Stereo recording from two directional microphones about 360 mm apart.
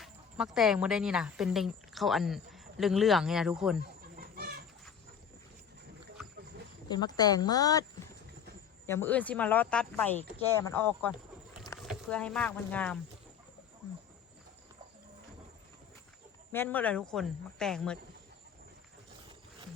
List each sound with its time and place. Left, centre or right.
0.0 s speech: centre
3.8 s chicken: right
6.8 s speech: centre
16.5 s speech: centre